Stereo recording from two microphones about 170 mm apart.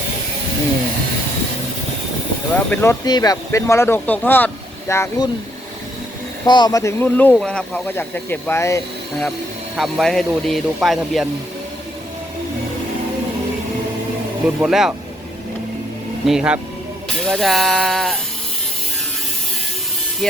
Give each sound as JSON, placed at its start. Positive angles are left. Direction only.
{"t": 2.6, "sound": "speech", "side_deg": 10}
{"t": 6.4, "sound": "speech", "side_deg": 25}
{"t": 9.7, "sound": "speech", "side_deg": 0}
{"t": 14.6, "sound": "speech", "side_deg": -5}
{"t": 16.2, "sound": "speech", "side_deg": -5}